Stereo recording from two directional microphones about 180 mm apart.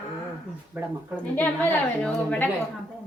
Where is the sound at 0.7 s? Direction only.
10° right (ahead or behind).